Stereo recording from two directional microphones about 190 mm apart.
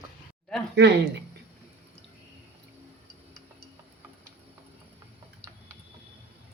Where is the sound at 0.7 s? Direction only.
65° right (ahead or behind).